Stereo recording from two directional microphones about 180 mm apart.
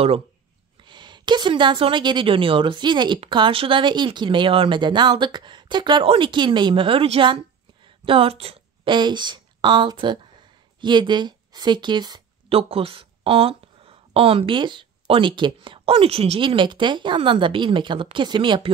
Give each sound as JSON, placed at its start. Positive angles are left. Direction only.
{"t": 0.8, "sound": "a woman's voice", "side_deg": -25}